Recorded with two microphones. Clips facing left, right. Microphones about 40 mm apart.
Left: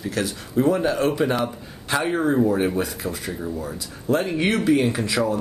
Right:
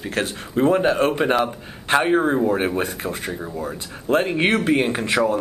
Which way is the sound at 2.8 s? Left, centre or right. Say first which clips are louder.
Right 1 dB; right.